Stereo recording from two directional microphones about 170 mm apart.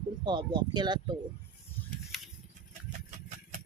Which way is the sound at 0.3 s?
25° right (ahead or behind).